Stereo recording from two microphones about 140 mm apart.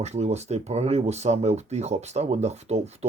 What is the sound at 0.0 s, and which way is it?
Speech, 50° right (ahead or behind).